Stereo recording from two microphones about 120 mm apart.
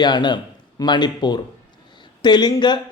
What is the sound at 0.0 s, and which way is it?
Speech, 40° left (ahead or behind).